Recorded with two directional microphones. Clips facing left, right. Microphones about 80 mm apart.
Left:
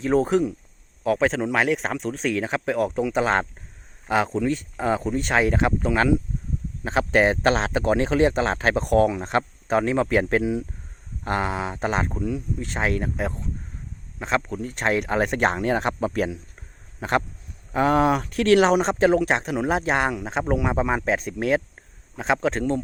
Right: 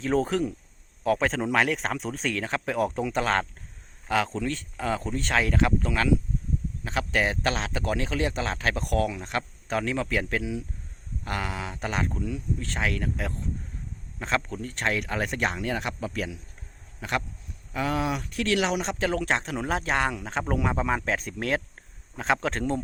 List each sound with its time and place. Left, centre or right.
0.0 s a man's voice: centre
4.3 s a man's voice: centre
14.4 s a man's voice: centre
14.9 s a man's voice: left
19.2 s a man's voice: centre